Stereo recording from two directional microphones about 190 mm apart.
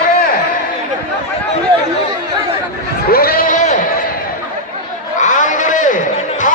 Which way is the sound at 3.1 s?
50° left (ahead or behind).